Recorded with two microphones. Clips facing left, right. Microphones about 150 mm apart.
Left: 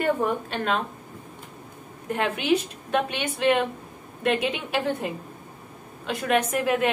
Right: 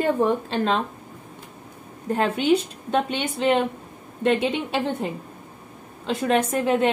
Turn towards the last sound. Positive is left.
turn(degrees=-30)  # may be behind; listen again after turning